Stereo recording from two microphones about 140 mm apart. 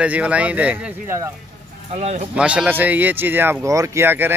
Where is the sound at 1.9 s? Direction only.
50° right (ahead or behind).